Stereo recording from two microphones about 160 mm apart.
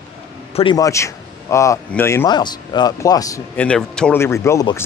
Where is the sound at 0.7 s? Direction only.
20° left (ahead or behind).